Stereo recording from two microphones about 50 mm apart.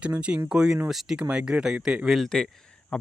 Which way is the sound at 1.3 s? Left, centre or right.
Centre.